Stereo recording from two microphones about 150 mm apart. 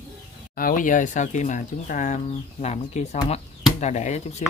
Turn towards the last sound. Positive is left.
turn(degrees=50)  # may be behind; listen again after turning